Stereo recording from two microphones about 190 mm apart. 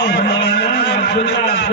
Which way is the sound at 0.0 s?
60° left (ahead or behind).